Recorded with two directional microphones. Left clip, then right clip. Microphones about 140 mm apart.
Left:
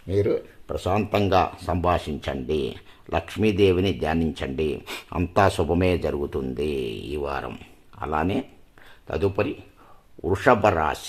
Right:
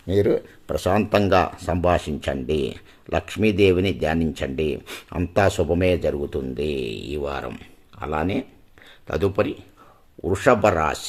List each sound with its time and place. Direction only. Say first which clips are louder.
0.1 s speech: right 3 dB; 25° right (ahead or behind); by 8.4 s 5° right (ahead or behind)
9.0 s speech: right 2 dB; 20° right (ahead or behind)